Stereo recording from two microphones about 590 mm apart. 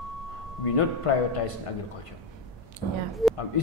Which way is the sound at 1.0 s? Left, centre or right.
Left.